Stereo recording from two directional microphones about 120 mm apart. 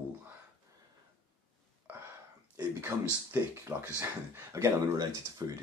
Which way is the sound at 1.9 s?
15° right (ahead or behind).